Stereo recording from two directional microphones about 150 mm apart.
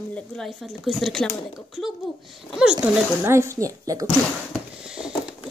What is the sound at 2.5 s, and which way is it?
Speech, 5° right (ahead or behind).